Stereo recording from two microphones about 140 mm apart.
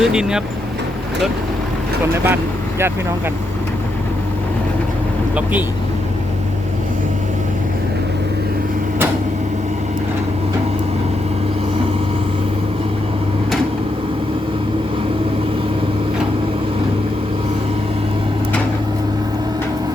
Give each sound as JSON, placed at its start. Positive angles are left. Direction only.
{"t": 0.0, "sound": "speech", "side_deg": -5}
{"t": 2.2, "sound": "speech", "side_deg": -15}